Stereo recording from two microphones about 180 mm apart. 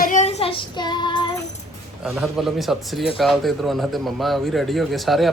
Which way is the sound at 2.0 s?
5° right (ahead or behind).